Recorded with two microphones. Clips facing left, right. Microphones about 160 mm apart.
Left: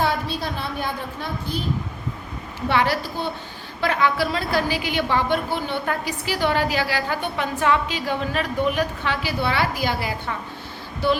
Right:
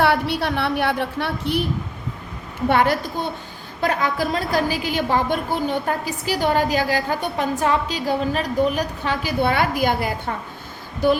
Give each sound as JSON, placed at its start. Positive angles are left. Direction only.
{"t": 0.0, "sound": "a woman's voice", "side_deg": -70}
{"t": 2.6, "sound": "a woman's voice", "side_deg": -50}